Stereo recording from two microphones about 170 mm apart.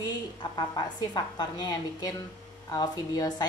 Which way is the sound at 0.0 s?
25° left (ahead or behind).